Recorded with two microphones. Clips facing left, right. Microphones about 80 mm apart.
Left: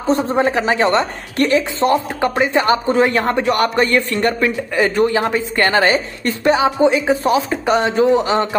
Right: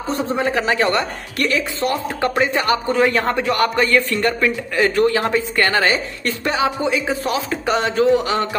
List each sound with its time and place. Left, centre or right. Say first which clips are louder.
0.1 s a woman's voice: left 5 dB; left